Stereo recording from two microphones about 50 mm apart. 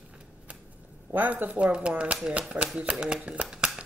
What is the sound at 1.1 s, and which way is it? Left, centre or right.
Speech, right.